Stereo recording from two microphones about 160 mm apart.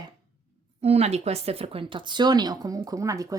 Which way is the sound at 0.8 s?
40° right (ahead or behind).